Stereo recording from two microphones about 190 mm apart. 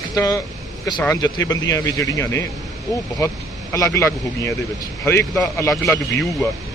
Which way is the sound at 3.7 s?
15° left (ahead or behind).